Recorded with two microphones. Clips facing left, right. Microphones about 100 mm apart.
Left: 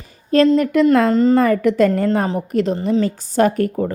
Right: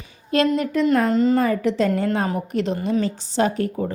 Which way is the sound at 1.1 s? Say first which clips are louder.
Left 4 dB; 40° left (ahead or behind).